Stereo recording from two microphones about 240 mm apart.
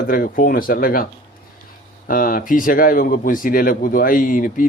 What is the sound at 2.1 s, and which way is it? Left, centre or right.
Speech, left.